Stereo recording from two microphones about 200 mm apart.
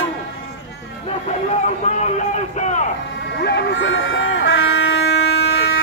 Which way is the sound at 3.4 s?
60° left (ahead or behind).